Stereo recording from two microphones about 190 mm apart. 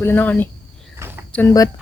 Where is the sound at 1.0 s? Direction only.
15° right (ahead or behind).